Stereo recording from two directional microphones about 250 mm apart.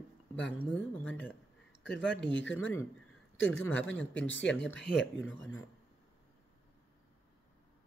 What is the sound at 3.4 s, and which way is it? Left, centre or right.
Speech, centre.